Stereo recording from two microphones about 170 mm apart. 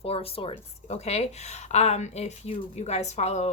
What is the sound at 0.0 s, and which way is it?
A woman's voice, 35° left (ahead or behind).